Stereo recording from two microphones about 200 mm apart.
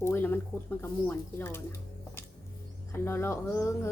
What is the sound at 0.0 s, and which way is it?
Speech, 10° left (ahead or behind).